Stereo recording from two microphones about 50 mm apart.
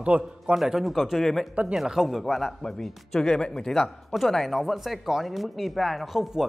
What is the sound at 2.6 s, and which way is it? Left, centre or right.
Speech, centre.